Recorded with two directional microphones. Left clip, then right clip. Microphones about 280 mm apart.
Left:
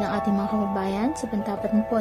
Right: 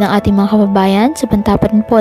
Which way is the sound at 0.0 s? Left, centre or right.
Right.